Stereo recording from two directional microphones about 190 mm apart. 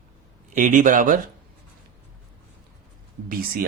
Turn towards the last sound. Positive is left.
turn(degrees=-50)  # may be behind; listen again after turning